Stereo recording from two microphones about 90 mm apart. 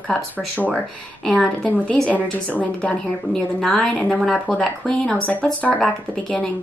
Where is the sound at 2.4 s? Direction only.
15° left (ahead or behind).